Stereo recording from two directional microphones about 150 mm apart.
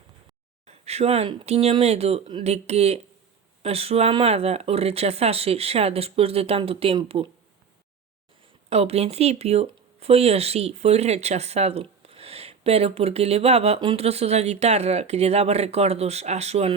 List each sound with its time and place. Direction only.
0.7 s speech: 45° right (ahead or behind)
8.7 s speech: 45° right (ahead or behind)